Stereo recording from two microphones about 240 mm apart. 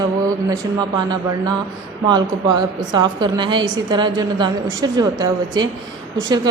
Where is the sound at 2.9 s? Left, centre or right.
Centre.